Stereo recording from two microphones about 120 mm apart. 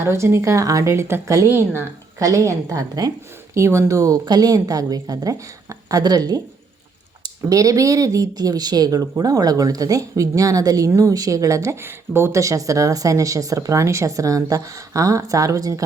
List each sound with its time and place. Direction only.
0.0 s speech: 20° right (ahead or behind)
7.5 s speech: 30° right (ahead or behind)